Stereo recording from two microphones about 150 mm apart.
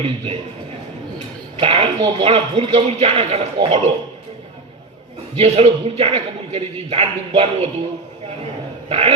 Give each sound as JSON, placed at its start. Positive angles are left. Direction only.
{"t": 1.5, "sound": "speech", "side_deg": -40}
{"t": 5.4, "sound": "speech", "side_deg": -45}
{"t": 8.9, "sound": "dog", "side_deg": -40}